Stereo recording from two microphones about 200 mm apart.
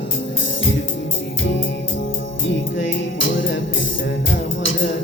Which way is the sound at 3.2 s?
70° left (ahead or behind).